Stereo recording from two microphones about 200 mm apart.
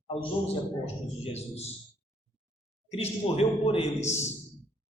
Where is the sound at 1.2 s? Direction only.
30° left (ahead or behind).